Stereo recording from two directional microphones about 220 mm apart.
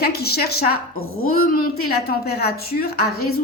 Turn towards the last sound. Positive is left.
turn(degrees=45)  # may be behind; listen again after turning